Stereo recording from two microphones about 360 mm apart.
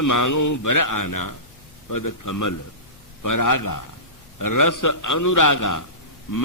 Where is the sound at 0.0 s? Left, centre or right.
Left.